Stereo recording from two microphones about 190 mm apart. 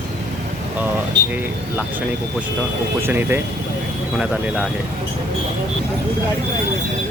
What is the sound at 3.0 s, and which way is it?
Speech, 10° right (ahead or behind).